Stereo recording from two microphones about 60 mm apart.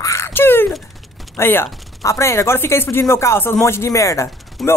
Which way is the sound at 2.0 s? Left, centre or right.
Left.